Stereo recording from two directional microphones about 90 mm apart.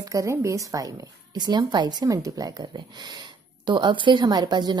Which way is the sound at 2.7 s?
55° right (ahead or behind).